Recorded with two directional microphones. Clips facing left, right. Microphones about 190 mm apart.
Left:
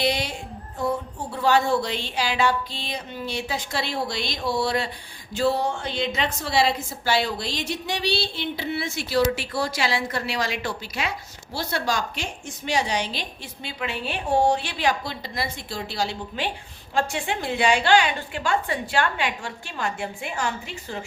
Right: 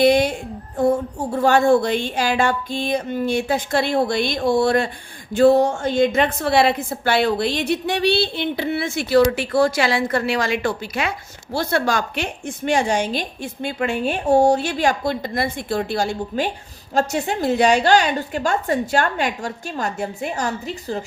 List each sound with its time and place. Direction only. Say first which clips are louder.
0.0 s a woman's voice: right 10 dB; 50° right (ahead or behind)